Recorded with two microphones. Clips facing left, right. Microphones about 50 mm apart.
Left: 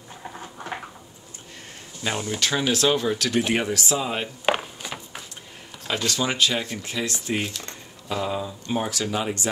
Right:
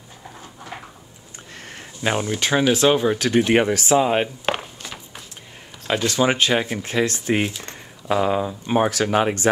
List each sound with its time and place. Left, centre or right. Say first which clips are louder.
2.0 s speech: right 4 dB; right
4.5 s a sound: left 1 dB; centre
6.0 s speech: right 5 dB; right